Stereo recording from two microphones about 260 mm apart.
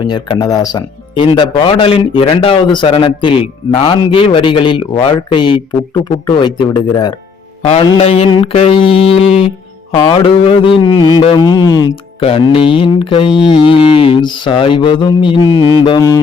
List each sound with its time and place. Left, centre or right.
0.0 s speech: centre